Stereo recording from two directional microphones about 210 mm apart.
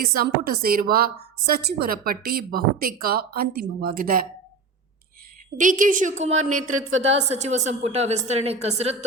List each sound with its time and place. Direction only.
0.0 s a woman's voice: 45° right (ahead or behind)
5.5 s a woman's voice: 40° right (ahead or behind)